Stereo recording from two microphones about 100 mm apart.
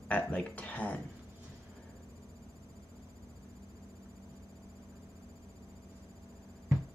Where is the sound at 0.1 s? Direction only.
15° left (ahead or behind).